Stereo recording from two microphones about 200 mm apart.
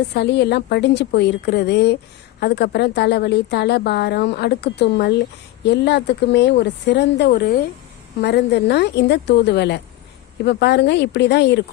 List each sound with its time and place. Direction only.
0.1 s a woman's voice: 55° left (ahead or behind)